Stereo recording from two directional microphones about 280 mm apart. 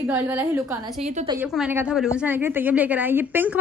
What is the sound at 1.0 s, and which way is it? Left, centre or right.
Speech, right.